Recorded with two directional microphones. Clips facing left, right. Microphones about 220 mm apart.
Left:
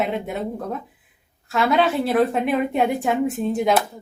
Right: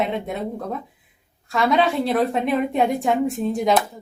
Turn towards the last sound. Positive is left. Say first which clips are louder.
# even
turn(degrees=0)  # may be behind; listen again after turning